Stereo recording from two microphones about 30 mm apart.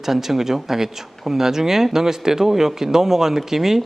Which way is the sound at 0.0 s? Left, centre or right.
Centre.